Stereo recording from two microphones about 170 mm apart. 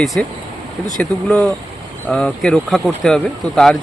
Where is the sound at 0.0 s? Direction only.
Centre (ahead or behind).